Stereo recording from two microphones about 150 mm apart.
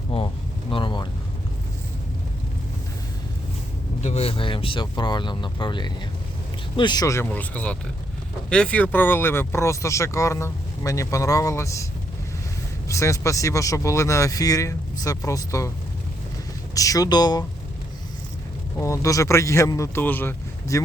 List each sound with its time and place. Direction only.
0.1 s speech: 40° left (ahead or behind)
0.7 s vehicle: 35° left (ahead or behind)
4.0 s speech: 45° left (ahead or behind); by 11.9 s 20° left (ahead or behind)
12.9 s speech: 20° left (ahead or behind)
16.7 s speech: 25° left (ahead or behind)
18.8 s speech: 20° left (ahead or behind)